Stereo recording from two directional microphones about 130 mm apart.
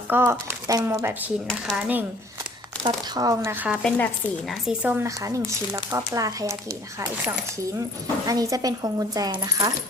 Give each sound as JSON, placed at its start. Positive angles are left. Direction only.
{"t": 0.1, "sound": "speech", "side_deg": -20}
{"t": 1.6, "sound": "speech", "side_deg": -10}
{"t": 2.8, "sound": "speech", "side_deg": -30}
{"t": 3.5, "sound": "speech", "side_deg": -10}
{"t": 3.8, "sound": "speech", "side_deg": 15}
{"t": 4.6, "sound": "speech", "side_deg": -10}
{"t": 5.7, "sound": "speech", "side_deg": -25}
{"t": 8.3, "sound": "speech", "side_deg": -30}